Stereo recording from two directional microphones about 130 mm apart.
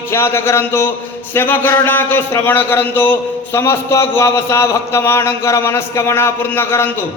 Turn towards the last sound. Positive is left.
turn(degrees=15)  # may be behind; listen again after turning